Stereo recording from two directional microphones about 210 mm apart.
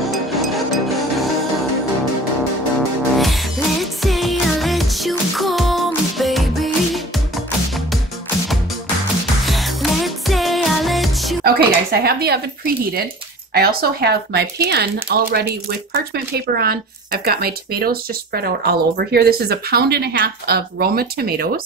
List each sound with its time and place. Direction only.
0.1 s music: centre (ahead or behind)
4.0 s music: centre (ahead or behind)
10.0 s music: centre (ahead or behind)
11.4 s speech: 45° right (ahead or behind)